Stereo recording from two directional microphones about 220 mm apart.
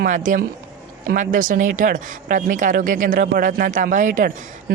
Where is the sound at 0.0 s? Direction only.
35° right (ahead or behind).